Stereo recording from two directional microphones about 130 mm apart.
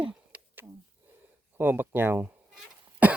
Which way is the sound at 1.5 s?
15° right (ahead or behind).